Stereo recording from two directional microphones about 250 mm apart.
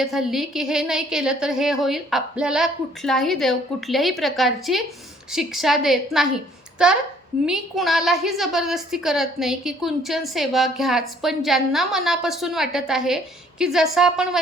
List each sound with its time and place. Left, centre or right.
0.0 s a woman's voice: centre